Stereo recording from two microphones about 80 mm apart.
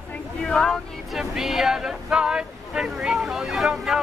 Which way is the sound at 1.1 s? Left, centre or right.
Centre.